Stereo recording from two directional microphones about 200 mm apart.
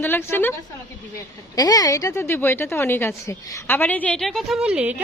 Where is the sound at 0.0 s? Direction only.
10° left (ahead or behind).